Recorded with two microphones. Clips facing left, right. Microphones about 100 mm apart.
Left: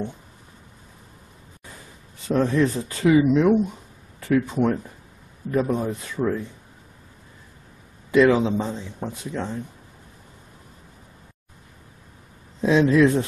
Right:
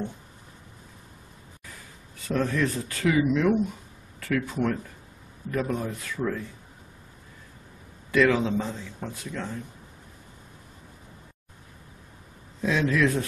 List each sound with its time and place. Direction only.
2.2 s speech: 20° left (ahead or behind)
8.1 s speech: 20° left (ahead or behind)
12.6 s speech: 25° left (ahead or behind)